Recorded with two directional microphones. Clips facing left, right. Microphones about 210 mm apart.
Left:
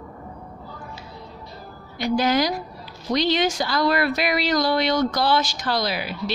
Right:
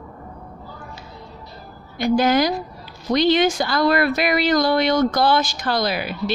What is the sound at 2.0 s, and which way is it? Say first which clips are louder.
Speech: right 3 dB; 50° right (ahead or behind).